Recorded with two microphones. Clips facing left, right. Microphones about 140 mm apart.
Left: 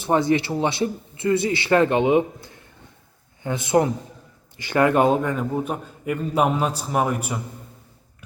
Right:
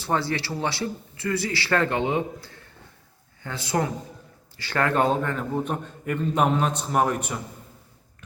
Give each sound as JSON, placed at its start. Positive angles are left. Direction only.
{"t": 0.0, "sound": "a man's voice", "side_deg": 20}